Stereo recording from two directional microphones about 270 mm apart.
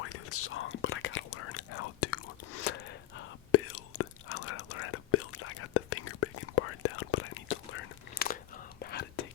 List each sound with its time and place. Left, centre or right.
0.0 s whispering: left
2.6 s gasp: left
3.5 s whispering: left